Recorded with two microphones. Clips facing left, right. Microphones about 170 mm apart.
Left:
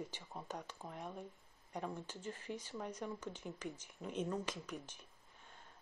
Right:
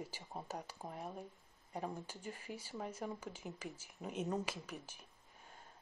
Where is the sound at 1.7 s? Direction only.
10° right (ahead or behind).